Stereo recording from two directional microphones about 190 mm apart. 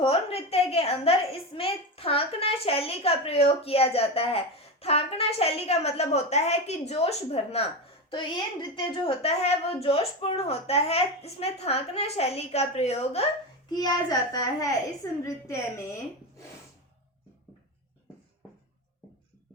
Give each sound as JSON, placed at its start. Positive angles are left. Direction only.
{"t": 0.0, "sound": "a woman's voice", "side_deg": 30}
{"t": 13.7, "sound": "a child's voice", "side_deg": 20}